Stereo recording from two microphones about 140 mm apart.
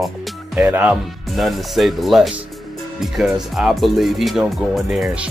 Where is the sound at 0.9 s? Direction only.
Centre (ahead or behind).